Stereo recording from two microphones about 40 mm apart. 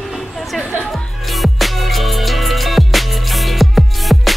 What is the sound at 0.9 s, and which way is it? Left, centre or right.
Music, centre.